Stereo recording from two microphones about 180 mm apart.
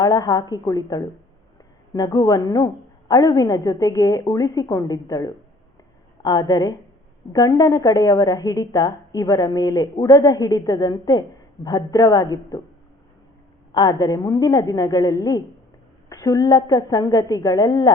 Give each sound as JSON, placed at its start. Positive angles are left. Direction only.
{"t": 0.0, "sound": "a woman's voice", "side_deg": 20}
{"t": 13.7, "sound": "a woman's voice", "side_deg": 20}